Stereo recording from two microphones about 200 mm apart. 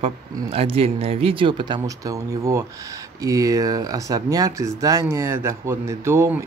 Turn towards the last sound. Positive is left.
turn(degrees=-15)  # may be behind; listen again after turning